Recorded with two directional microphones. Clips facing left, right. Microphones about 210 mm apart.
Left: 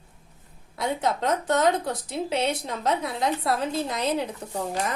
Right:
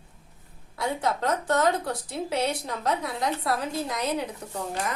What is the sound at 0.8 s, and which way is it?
A woman's voice, 20° left (ahead or behind).